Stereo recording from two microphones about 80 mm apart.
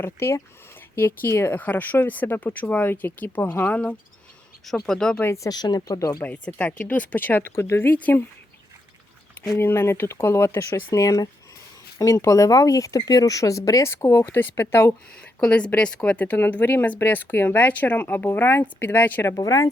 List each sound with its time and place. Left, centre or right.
0.0 s speech: left
4.6 s speech: centre
5.2 s speech: left
5.5 s speech: left
6.2 s speech: centre
9.6 s speech: left
13.9 s speech: left
15.4 s speech: centre
19.4 s speech: left